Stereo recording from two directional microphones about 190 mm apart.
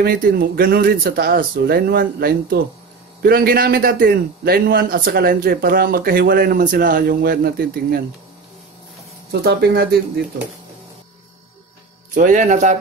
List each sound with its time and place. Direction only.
0.0 s a man's voice: 50° right (ahead or behind)
9.3 s speech: 55° right (ahead or behind)
12.1 s speech: 45° right (ahead or behind)